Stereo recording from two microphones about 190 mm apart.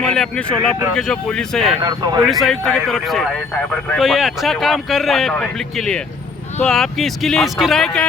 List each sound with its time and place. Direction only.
0.0 s speech: 5° left (ahead or behind)
1.8 s speech: 20° right (ahead or behind)
2.2 s speech: centre (ahead or behind)